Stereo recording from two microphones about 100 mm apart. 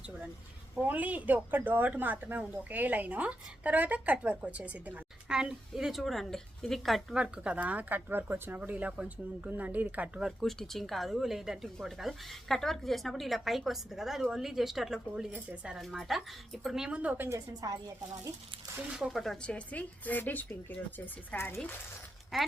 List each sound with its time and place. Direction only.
0.8 s speech: 15° right (ahead or behind); by 7.2 s centre (ahead or behind)
7.2 s speech: 10° right (ahead or behind)
10.4 s speech: 5° left (ahead or behind); by 15.8 s 10° right (ahead or behind)
15.8 s speech: centre (ahead or behind)
17.2 s a woman's voice: 35° right (ahead or behind)
18.8 s speech: 10° right (ahead or behind)
19.5 s speech: 15° left (ahead or behind)
22.3 s speech: centre (ahead or behind)